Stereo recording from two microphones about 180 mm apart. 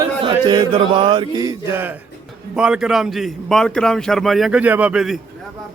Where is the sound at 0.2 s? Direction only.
25° right (ahead or behind).